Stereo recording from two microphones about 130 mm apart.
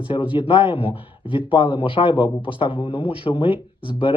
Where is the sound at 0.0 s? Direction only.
40° left (ahead or behind).